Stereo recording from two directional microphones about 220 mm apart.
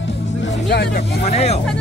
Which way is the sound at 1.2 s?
30° left (ahead or behind).